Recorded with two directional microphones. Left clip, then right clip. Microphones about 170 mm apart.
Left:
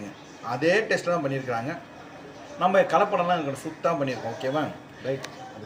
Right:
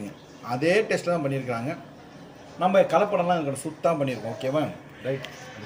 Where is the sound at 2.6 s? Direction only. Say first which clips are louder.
Even; 5° left (ahead or behind).